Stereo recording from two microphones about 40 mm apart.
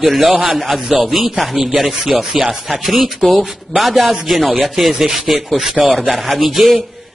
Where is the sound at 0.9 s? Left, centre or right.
Centre.